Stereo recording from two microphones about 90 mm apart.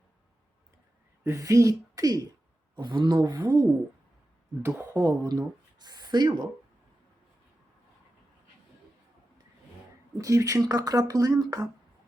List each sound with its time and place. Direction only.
1.2 s speech: 35° right (ahead or behind)
2.7 s speech: 55° right (ahead or behind)
3.2 s speech: 40° right (ahead or behind)
4.6 s speech: 25° right (ahead or behind)
5.8 s speech: 50° right (ahead or behind)
10.2 s speech: 40° right (ahead or behind)